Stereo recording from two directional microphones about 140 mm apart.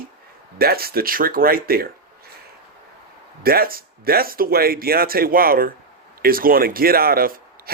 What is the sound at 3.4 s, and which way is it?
Speech, 90° right.